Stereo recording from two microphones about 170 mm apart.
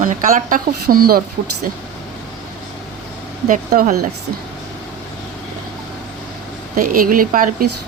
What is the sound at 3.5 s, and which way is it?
Speech, 50° right (ahead or behind).